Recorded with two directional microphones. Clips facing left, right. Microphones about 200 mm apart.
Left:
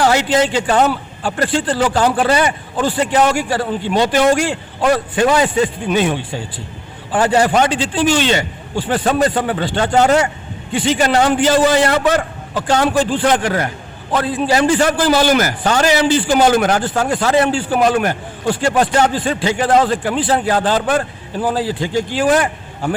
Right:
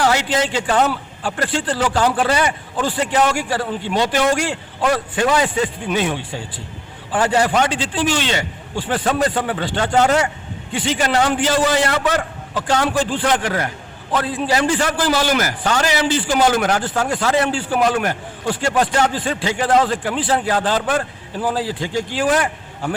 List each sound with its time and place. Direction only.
0.0 s a man's voice: 30° left (ahead or behind)